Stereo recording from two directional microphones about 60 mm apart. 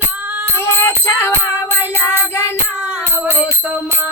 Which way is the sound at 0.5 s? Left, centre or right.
Left.